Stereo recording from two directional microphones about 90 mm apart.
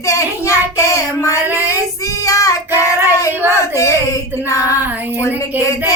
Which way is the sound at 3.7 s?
35° left (ahead or behind).